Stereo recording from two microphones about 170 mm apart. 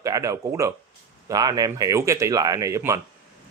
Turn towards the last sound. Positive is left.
turn(degrees=-15)  # may be behind; listen again after turning